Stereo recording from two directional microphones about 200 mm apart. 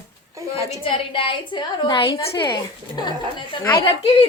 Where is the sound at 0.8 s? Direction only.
25° left (ahead or behind).